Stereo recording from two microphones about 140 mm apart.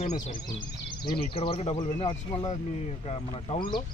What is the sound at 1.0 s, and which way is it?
Speech, 40° left (ahead or behind).